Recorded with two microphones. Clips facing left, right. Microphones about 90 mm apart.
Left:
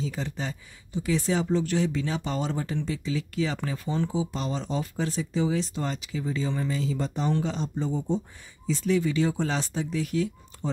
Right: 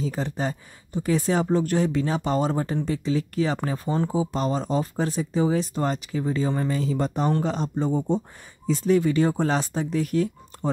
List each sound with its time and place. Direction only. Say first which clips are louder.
0.0 s speech: right 5 dB; 45° right (ahead or behind)